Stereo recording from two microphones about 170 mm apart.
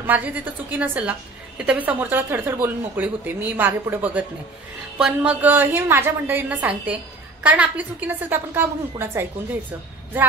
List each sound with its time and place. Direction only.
0.0 s speech: 10° right (ahead or behind)